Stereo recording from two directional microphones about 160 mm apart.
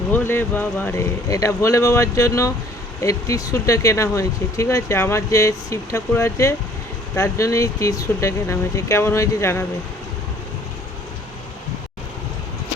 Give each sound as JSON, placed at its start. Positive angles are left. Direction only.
{"t": 0.1, "sound": "speech", "side_deg": 10}